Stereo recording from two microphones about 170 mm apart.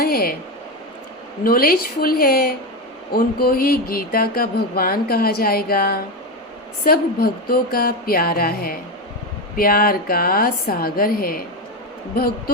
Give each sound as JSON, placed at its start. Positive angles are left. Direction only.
{"t": 0.0, "sound": "speech", "side_deg": 60}
{"t": 1.5, "sound": "speech", "side_deg": 60}